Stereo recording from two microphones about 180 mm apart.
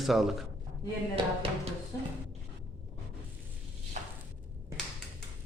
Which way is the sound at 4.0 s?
40° right (ahead or behind).